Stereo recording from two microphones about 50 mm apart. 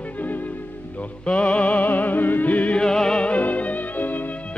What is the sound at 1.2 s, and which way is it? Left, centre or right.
Music, left.